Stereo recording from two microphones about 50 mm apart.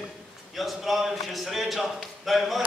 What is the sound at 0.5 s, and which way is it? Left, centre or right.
A man's voice, centre.